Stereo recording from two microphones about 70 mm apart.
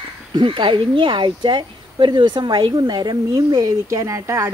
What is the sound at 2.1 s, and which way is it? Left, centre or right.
Speech, right.